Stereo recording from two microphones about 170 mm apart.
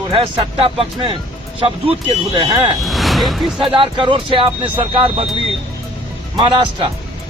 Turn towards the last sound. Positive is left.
turn(degrees=-30)  # may be behind; listen again after turning